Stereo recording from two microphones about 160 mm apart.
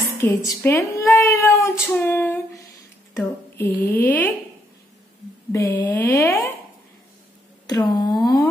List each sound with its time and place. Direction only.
0.2 s a woman's voice: 20° left (ahead or behind)
5.5 s a woman's voice: 15° left (ahead or behind)
7.9 s speech: 25° left (ahead or behind)